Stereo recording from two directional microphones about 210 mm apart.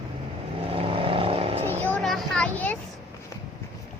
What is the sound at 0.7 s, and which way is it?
Vehicle, 25° right (ahead or behind).